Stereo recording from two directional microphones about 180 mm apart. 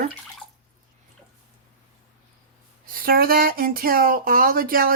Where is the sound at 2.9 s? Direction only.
55° right (ahead or behind).